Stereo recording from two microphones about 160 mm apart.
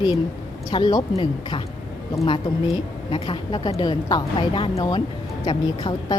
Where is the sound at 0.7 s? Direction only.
30° left (ahead or behind).